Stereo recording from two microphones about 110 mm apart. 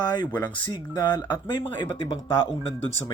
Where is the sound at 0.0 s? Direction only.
40° left (ahead or behind).